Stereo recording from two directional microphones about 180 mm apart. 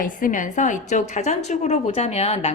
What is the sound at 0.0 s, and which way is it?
A woman's voice, 45° left (ahead or behind).